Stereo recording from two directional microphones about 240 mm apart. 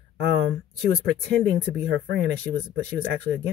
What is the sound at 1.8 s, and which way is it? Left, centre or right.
Speech, right.